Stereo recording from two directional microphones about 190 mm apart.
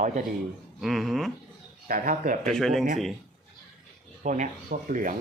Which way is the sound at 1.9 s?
45° right (ahead or behind).